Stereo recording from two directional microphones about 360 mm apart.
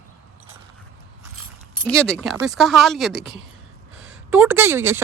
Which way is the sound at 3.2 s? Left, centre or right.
Right.